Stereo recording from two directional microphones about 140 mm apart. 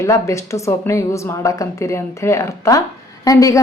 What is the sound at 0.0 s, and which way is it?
A woman's voice, 20° left (ahead or behind).